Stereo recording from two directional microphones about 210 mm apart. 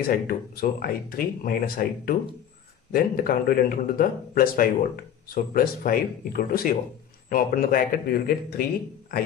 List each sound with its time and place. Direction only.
0.0 s speech: 45° left (ahead or behind)